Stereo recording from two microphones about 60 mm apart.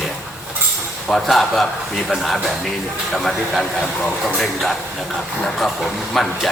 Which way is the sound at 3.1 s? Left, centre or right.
Centre.